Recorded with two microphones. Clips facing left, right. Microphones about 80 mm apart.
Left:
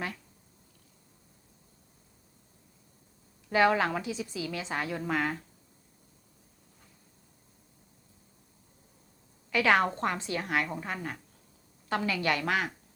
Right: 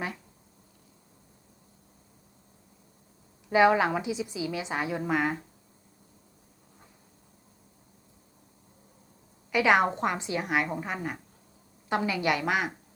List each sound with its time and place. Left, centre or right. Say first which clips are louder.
3.5 s a woman's voice: right 3 dB; centre
9.5 s a woman's voice: right 2 dB; centre